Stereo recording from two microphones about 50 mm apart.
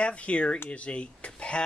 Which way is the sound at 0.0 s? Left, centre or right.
Left.